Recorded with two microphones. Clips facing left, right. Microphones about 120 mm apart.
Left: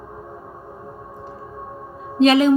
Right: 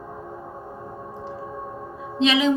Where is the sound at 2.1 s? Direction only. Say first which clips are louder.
Left 6 dB; 45° left (ahead or behind).